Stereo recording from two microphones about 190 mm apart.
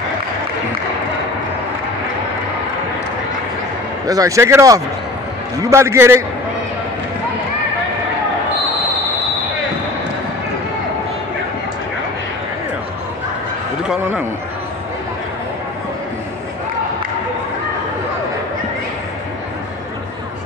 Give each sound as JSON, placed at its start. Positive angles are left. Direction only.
{"t": 4.1, "sound": "speech", "side_deg": -15}